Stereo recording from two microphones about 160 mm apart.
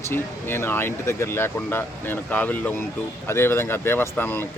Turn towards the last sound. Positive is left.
turn(degrees=10)  # may be behind; listen again after turning